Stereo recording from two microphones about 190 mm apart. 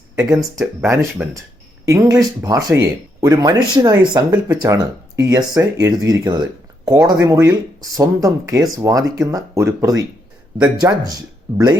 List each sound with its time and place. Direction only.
0.6 s speech: 10° right (ahead or behind)